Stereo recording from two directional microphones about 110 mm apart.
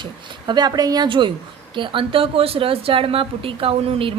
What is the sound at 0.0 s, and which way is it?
Speech, 40° right (ahead or behind).